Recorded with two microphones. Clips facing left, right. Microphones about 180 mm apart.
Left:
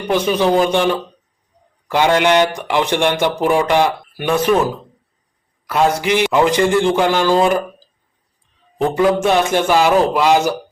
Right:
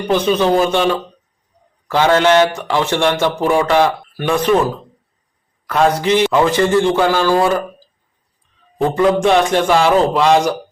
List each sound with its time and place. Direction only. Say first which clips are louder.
0.1 s speech: right 1 dB; 10° left (ahead or behind)
8.8 s speech: right 1 dB; 5° left (ahead or behind)